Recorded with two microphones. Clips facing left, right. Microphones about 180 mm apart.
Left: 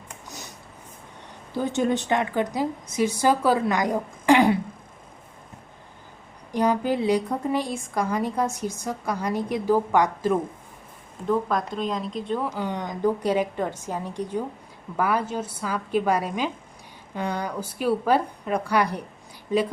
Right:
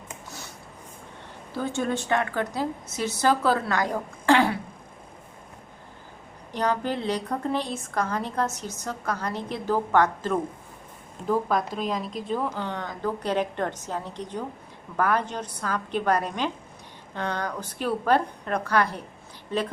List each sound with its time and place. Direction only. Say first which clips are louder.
0.3 s a sound: left 4 dB; 20° left (ahead or behind)
1.5 s a woman's voice: left 4 dB; 20° left (ahead or behind)
6.5 s a woman's voice: left 4 dB; 10° left (ahead or behind)
11.3 s speech: left 1 dB; 5° right (ahead or behind)
12.5 s a woman's voice: left 3 dB; 15° left (ahead or behind)